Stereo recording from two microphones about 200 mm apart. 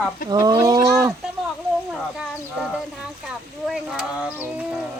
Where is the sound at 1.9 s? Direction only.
Centre (ahead or behind).